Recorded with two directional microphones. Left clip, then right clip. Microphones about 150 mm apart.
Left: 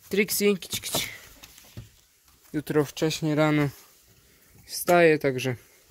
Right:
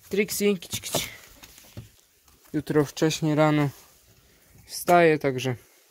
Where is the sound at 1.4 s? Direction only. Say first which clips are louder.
Right 1 dB; 85° right.